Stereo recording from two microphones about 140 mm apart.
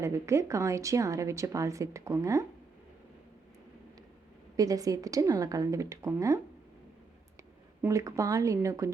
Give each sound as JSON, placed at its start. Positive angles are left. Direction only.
{"t": 0.0, "sound": "a woman's voice", "side_deg": -20}
{"t": 4.5, "sound": "a woman's voice", "side_deg": -25}
{"t": 7.8, "sound": "a woman's voice", "side_deg": -20}